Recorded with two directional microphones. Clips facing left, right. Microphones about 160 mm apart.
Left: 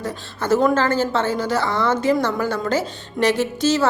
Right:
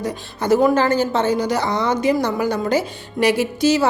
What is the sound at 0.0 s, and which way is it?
Speech, 15° right (ahead or behind).